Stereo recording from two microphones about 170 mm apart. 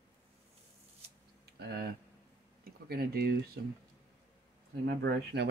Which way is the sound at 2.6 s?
65° right (ahead or behind).